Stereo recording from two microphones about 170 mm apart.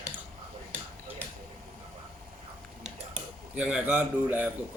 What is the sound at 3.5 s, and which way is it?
Speech, 5° right (ahead or behind).